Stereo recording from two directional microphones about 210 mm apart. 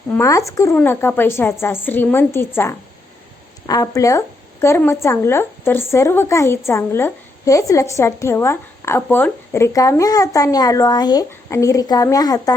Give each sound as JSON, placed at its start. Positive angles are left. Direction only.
{"t": 0.1, "sound": "a woman's voice", "side_deg": 15}
{"t": 3.7, "sound": "a woman's voice", "side_deg": 15}